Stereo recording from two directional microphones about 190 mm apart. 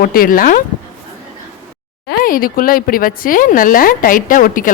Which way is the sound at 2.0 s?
50° left (ahead or behind).